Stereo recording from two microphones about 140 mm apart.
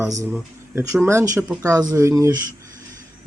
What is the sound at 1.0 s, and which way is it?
Speech, 20° right (ahead or behind).